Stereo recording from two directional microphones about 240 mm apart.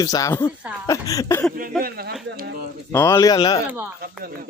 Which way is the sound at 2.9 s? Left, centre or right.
Centre.